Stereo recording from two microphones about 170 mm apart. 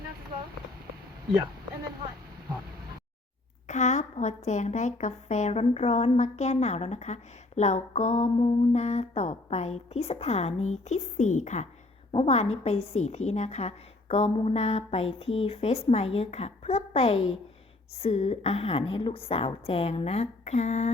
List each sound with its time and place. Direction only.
3.7 s a woman's voice: 45° left (ahead or behind)